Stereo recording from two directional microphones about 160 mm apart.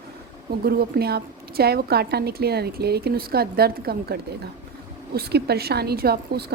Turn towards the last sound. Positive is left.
turn(degrees=-80)